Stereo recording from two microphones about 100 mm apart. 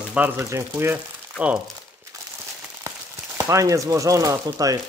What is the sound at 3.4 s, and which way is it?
Chopping, 30° right (ahead or behind).